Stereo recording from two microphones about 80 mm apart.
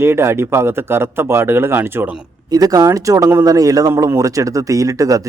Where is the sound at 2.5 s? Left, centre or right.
Right.